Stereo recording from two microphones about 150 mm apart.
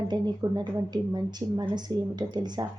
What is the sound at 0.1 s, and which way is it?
Speech, 30° right (ahead or behind).